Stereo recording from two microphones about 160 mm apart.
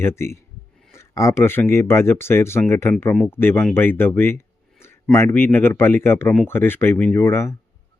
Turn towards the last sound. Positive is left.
turn(degrees=15)  # may be behind; listen again after turning